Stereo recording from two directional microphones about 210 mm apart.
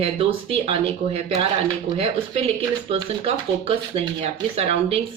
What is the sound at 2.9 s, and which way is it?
A woman's voice, 25° right (ahead or behind).